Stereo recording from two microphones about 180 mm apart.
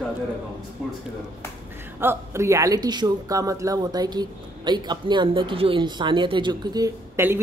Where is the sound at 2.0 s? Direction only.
15° right (ahead or behind).